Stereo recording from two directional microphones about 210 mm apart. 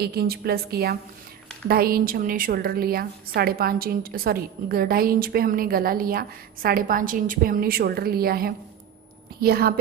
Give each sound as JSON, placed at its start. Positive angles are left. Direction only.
{"t": 0.0, "sound": "a woman's voice", "side_deg": -50}